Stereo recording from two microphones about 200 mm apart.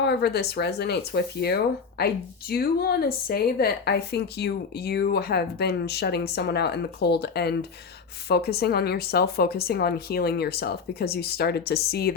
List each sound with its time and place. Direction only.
0.0 s a woman's voice: 55° left (ahead or behind)